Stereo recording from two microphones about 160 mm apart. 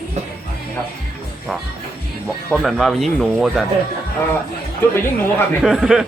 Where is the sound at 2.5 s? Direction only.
Centre (ahead or behind).